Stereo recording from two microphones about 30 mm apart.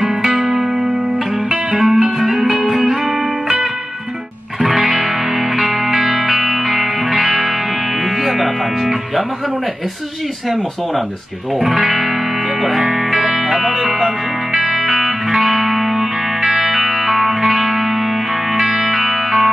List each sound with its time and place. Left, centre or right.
0.2 s music: centre
1.8 s music: right
4.6 s music: centre
11.8 s music: centre